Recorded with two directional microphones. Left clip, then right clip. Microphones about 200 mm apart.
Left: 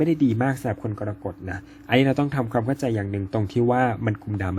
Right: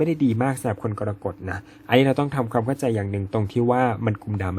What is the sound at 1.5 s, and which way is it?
A man's voice, 10° right (ahead or behind).